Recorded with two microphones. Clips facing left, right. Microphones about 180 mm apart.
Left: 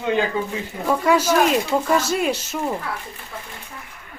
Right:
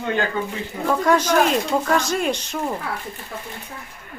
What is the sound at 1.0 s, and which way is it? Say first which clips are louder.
Speech: even; 10° left (ahead or behind).